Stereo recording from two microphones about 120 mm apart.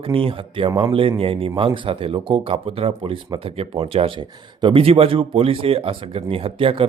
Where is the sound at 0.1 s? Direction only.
50° right (ahead or behind).